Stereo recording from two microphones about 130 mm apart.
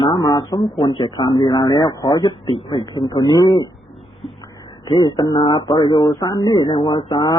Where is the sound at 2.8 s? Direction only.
35° left (ahead or behind).